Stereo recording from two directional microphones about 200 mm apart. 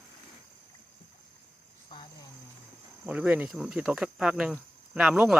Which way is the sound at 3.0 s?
5° right (ahead or behind).